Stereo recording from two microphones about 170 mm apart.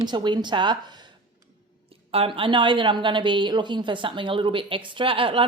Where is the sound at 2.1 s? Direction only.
35° right (ahead or behind).